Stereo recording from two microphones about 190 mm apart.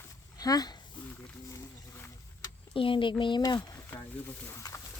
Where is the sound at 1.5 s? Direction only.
15° left (ahead or behind).